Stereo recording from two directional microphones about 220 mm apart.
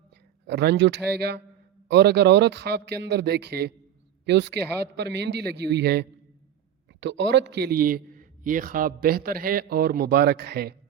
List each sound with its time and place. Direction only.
0.4 s a man's voice: 50° right (ahead or behind)